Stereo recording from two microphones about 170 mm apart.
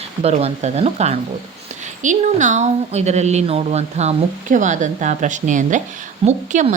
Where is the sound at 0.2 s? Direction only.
40° right (ahead or behind).